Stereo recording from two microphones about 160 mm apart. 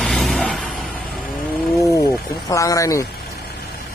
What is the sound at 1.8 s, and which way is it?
Speech, 20° left (ahead or behind).